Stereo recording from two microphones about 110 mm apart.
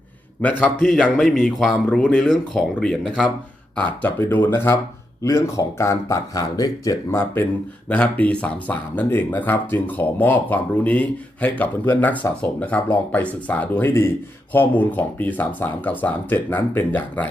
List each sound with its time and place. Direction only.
0.4 s speech: 10° left (ahead or behind)
3.8 s speech: 10° left (ahead or behind)
7.9 s speech: 10° left (ahead or behind)